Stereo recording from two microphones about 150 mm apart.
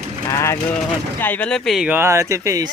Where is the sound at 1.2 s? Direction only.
10° left (ahead or behind).